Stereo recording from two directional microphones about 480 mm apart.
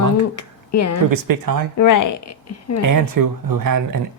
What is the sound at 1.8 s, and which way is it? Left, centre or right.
Speech, left.